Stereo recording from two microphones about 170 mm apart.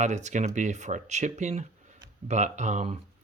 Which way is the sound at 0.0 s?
45° right (ahead or behind).